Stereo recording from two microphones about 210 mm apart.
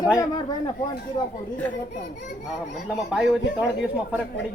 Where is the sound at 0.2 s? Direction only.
20° left (ahead or behind).